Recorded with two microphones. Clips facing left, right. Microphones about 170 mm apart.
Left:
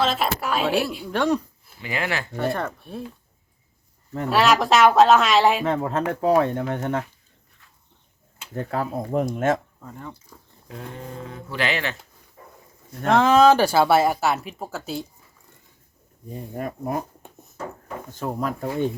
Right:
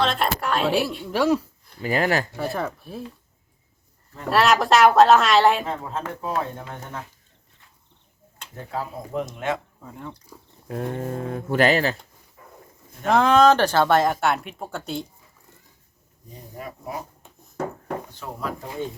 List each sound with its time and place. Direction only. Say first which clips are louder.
0.0 s speech: even; 5° left (ahead or behind)
1.8 s speech: right 5 dB; 40° right (ahead or behind)
2.3 s speech: left 2 dB; centre (ahead or behind)
4.3 s speech: even; centre (ahead or behind)
5.6 s speech: left 7 dB; 70° left (ahead or behind)
8.5 s speech: left 5 dB; 60° left (ahead or behind)
9.3 s speech: left 6 dB; 45° left (ahead or behind)
9.8 s speech: even; centre (ahead or behind)
10.7 s speech: right 8 dB; 50° right (ahead or behind)
12.4 s dog: left 2 dB; 35° left (ahead or behind)
13.1 s speech: left 1 dB; centre (ahead or behind)
16.3 s speech: left 7 dB; 50° left (ahead or behind)
18.1 s speech: left 5 dB; 45° left (ahead or behind)